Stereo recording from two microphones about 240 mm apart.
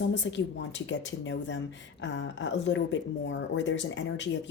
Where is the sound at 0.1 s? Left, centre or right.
Left.